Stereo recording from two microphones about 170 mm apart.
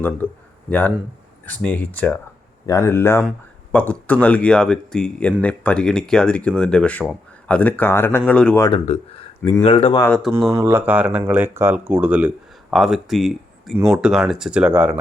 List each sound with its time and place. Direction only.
0.2 s speech: 10° left (ahead or behind)
8.7 s speech: 30° left (ahead or behind)
10.5 s speech: 15° right (ahead or behind)